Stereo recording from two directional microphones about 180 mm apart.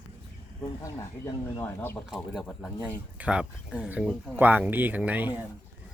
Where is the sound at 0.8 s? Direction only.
15° left (ahead or behind).